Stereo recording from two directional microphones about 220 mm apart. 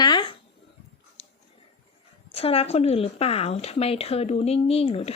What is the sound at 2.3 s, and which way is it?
Speech, 25° left (ahead or behind).